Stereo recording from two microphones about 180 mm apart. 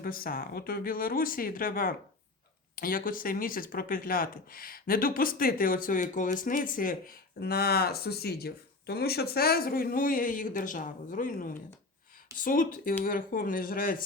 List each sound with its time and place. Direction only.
0.0 s speech: 55° left (ahead or behind)